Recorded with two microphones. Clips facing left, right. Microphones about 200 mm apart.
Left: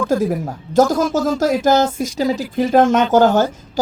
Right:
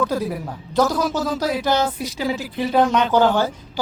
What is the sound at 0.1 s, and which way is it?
Speech, 45° left (ahead or behind).